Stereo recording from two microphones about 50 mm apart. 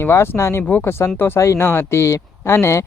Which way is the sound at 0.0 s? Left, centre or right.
Left.